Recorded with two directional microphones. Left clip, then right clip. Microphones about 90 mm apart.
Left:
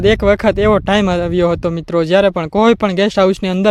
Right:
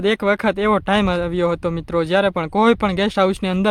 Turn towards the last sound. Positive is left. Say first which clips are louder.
# left 5 dB
turn(degrees=45)  # may be behind; listen again after turning